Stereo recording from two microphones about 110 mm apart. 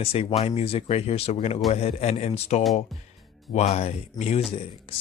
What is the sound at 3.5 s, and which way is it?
Speech, 80° left.